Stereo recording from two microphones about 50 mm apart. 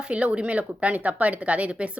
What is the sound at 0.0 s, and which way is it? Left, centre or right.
Speech, right.